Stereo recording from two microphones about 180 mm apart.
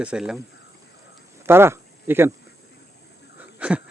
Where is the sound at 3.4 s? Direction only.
5° right (ahead or behind).